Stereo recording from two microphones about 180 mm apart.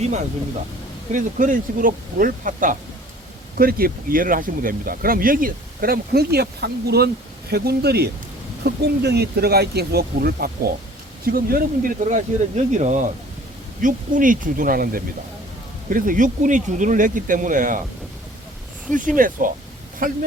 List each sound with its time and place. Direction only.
1.1 s speech: 45° right (ahead or behind)
18.9 s speech: 50° right (ahead or behind)